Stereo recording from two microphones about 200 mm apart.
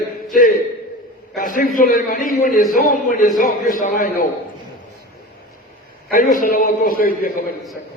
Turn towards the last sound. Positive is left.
turn(degrees=45)  # may be behind; listen again after turning